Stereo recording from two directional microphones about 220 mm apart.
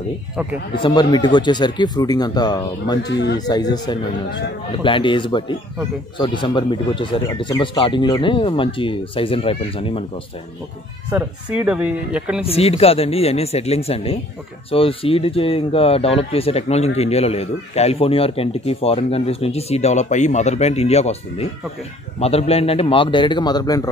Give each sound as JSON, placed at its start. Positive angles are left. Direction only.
{"t": 0.7, "sound": "speech", "side_deg": 20}
{"t": 11.1, "sound": "speech", "side_deg": -10}
{"t": 12.4, "sound": "speech", "side_deg": 25}